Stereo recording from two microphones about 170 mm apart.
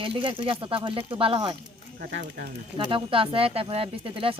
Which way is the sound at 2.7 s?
30° right (ahead or behind).